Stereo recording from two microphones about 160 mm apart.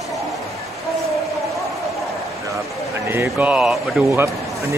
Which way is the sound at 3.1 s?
15° right (ahead or behind).